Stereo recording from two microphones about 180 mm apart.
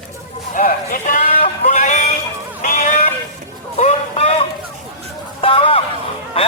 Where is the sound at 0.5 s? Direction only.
50° left (ahead or behind).